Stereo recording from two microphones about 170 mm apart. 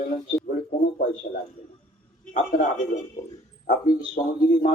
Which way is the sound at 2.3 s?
50° left (ahead or behind).